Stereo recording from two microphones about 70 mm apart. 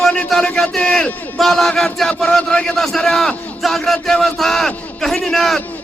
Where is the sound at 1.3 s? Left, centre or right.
Centre.